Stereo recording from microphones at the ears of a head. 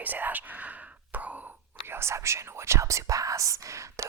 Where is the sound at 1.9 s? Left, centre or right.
Right.